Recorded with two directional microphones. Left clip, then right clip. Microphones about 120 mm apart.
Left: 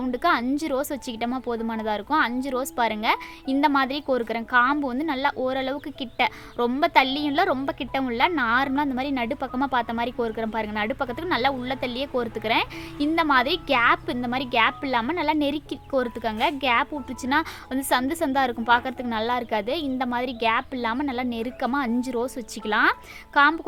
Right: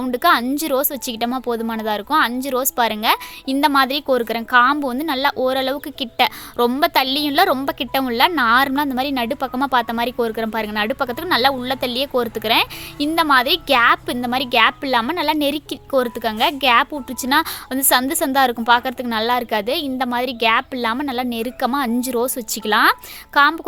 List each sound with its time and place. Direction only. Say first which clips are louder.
0.0 s a woman's voice: right 7 dB; 25° right (ahead or behind)